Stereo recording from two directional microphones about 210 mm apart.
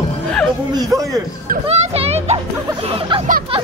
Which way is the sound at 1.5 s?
30° right (ahead or behind).